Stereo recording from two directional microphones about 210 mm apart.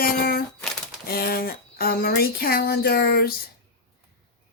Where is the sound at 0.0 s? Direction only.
45° left (ahead or behind).